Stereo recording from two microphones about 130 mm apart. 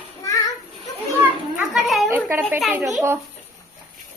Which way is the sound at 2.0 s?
15° right (ahead or behind).